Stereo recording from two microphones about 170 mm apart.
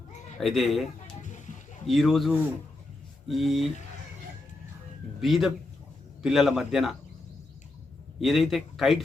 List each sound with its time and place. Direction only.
0.3 s speech: centre (ahead or behind)
1.2 s a sound: 45° left (ahead or behind)
1.9 s speech: centre (ahead or behind)
5.2 s speech: centre (ahead or behind)
8.2 s speech: centre (ahead or behind)